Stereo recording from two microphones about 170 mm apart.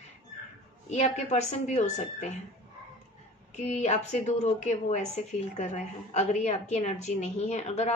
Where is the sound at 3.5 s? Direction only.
40° left (ahead or behind).